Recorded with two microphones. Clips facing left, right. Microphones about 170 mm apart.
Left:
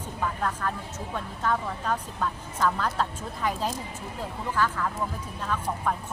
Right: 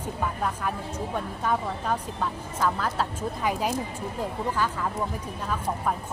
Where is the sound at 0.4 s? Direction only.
10° right (ahead or behind).